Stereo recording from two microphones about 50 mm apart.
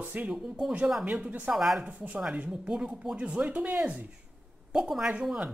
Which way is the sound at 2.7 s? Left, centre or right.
Centre.